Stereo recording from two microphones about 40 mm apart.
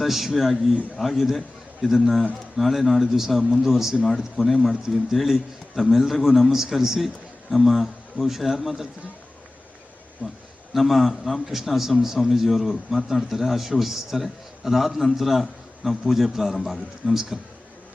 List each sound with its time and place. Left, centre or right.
0.0 s a man's voice: centre
6.5 s a man's voice: centre
10.2 s a man's voice: left
10.8 s a man's voice: centre